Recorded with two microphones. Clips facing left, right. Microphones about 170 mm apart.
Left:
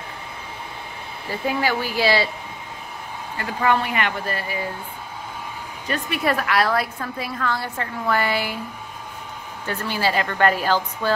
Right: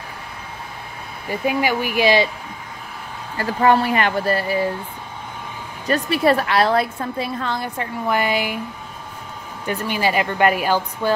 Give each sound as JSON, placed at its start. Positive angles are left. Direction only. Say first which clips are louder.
{"t": 1.3, "sound": "a woman's voice", "louder": "right 3 dB", "side_deg": -15}
{"t": 3.3, "sound": "speech", "louder": "right 5 dB", "side_deg": -35}
{"t": 5.9, "sound": "a woman's voice", "louder": "right 6 dB", "side_deg": -35}
{"t": 9.7, "sound": "a woman's voice", "louder": "right 2 dB", "side_deg": -15}